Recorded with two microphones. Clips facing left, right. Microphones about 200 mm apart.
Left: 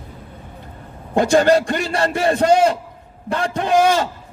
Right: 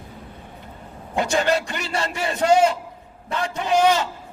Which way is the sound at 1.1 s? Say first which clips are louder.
Left 7 dB; 50° left (ahead or behind).